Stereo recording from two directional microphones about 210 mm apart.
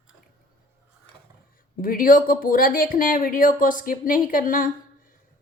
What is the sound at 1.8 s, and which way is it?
Speech, 40° left (ahead or behind).